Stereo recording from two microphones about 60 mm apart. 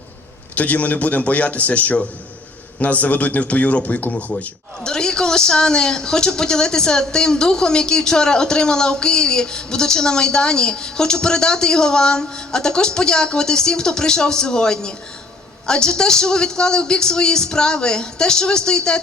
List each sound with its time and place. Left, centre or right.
0.5 s a man's voice: left